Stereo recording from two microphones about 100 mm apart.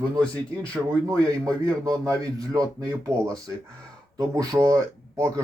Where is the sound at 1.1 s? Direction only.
35° right (ahead or behind).